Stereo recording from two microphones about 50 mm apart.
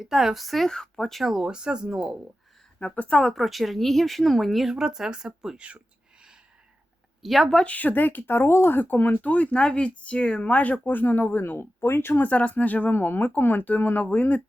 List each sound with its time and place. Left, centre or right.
0.0 s speech: centre
0.7 s speech: centre
1.2 s speech: centre
2.8 s speech: centre
3.2 s speech: centre
5.5 s speech: right
7.2 s speech: centre
7.6 s speech: left
11.8 s speech: left
12.3 s speech: left